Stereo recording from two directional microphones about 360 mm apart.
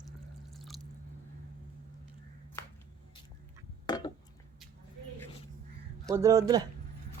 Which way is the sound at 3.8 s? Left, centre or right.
Centre.